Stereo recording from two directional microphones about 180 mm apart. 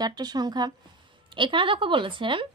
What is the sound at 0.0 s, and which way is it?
Speech, 20° right (ahead or behind).